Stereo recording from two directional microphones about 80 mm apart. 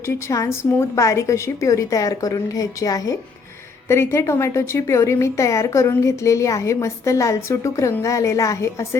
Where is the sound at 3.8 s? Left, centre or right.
Left.